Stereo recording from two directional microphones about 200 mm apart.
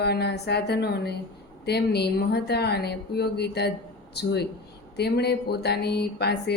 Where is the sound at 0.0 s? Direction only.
55° left (ahead or behind).